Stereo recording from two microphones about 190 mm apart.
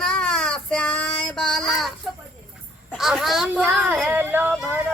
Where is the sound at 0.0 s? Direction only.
5° left (ahead or behind).